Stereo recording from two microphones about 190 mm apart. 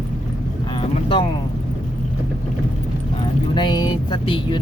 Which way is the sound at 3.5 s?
25° left (ahead or behind).